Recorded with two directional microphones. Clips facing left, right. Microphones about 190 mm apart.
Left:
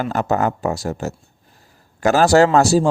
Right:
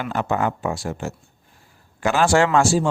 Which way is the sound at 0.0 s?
40° left (ahead or behind).